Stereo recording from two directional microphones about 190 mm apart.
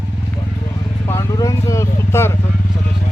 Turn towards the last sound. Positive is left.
turn(degrees=15)  # may be behind; listen again after turning